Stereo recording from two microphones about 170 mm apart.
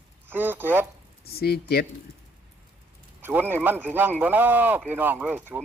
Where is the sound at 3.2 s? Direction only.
10° right (ahead or behind).